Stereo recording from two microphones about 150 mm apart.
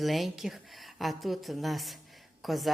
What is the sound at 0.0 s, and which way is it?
A woman's voice, centre (ahead or behind).